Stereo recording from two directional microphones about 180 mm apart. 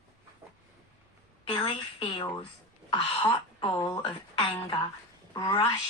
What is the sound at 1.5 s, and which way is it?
A woman's voice, 25° left (ahead or behind).